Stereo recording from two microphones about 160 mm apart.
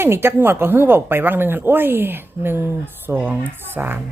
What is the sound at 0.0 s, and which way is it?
Speech, 15° right (ahead or behind).